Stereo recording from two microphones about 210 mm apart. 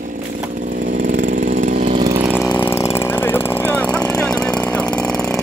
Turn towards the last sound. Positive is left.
turn(degrees=5)  # may be behind; listen again after turning